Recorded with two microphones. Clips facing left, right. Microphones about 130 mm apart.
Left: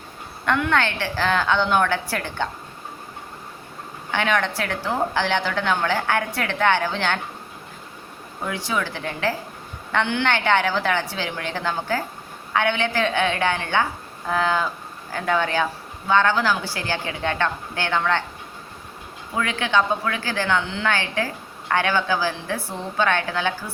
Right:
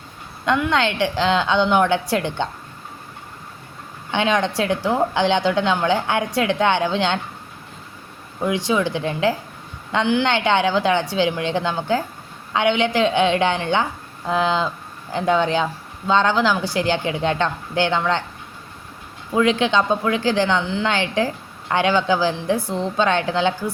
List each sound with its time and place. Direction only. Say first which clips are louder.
0.4 s a woman's voice: right 2 dB; 15° right (ahead or behind)
4.1 s a woman's voice: right 3 dB; 20° right (ahead or behind)
8.4 s a woman's voice: right 6 dB; 20° right (ahead or behind)
19.4 s a woman's voice: right 4 dB; 20° right (ahead or behind)